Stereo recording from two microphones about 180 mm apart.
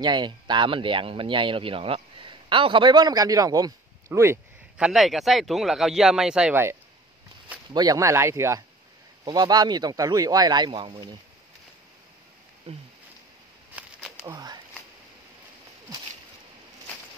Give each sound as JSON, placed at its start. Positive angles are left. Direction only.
{"t": 0.0, "sound": "speech", "side_deg": -25}
{"t": 12.7, "sound": "speech", "side_deg": -35}
{"t": 13.7, "sound": "a sound", "side_deg": -10}
{"t": 14.2, "sound": "speech", "side_deg": -20}